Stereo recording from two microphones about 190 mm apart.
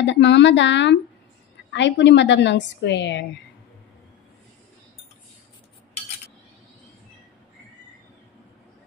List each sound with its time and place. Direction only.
0.0 s a woman's voice: 70° left (ahead or behind)